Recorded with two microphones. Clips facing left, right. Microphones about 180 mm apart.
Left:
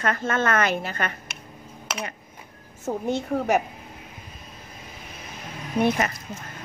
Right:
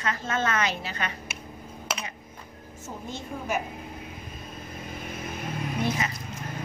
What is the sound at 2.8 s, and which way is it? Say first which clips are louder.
Speech: left 11 dB; 65° left (ahead or behind).